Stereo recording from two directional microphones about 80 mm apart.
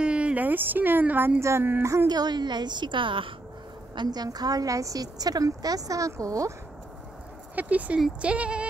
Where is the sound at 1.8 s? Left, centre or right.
Right.